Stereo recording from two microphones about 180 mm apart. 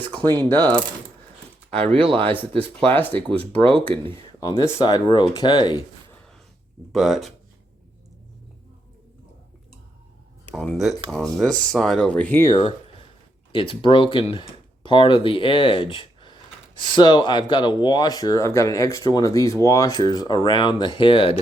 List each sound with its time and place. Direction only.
0.0 s coin: 10° left (ahead or behind)
1.8 s speech: 30° right (ahead or behind)
2.8 s speech: 10° left (ahead or behind)
3.6 s speech: 30° right (ahead or behind)
3.8 s speech: 15° left (ahead or behind)
6.9 s speech: centre (ahead or behind)
10.5 s speech: centre (ahead or behind); by 21.3 s 30° left (ahead or behind)